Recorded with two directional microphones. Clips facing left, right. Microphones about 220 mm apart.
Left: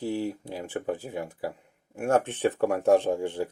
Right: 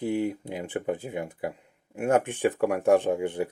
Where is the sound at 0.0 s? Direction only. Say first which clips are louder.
Right 2 dB; 20° right (ahead or behind).